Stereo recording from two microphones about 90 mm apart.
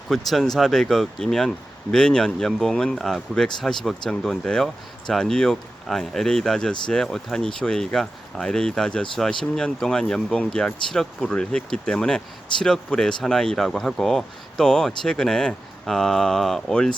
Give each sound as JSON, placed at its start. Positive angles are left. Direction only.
{"t": 0.1, "sound": "speech", "side_deg": 5}